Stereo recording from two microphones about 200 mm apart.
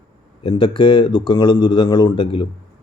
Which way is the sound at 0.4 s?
25° left (ahead or behind).